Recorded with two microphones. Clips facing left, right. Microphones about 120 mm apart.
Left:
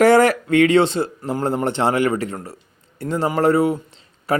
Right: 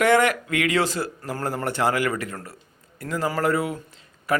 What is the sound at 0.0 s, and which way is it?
A man's voice, 35° left (ahead or behind).